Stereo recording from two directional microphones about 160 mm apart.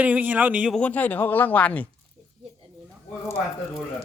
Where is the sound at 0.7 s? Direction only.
10° left (ahead or behind).